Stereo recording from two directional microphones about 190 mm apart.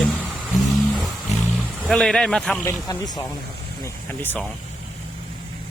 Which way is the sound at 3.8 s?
10° left (ahead or behind).